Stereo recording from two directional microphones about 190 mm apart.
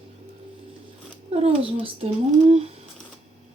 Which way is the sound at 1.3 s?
30° right (ahead or behind).